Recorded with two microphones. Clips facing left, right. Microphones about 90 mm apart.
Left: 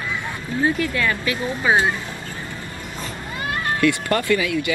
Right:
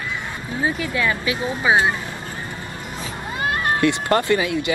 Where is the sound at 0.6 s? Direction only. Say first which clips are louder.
Left 1 dB; 15° right (ahead or behind).